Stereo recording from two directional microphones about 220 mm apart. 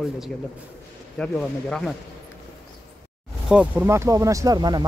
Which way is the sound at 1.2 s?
Centre (ahead or behind).